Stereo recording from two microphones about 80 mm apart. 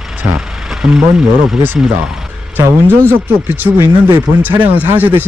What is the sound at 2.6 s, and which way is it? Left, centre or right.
Speech, right.